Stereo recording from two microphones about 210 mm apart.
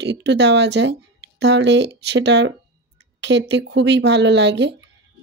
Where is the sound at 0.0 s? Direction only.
55° right (ahead or behind).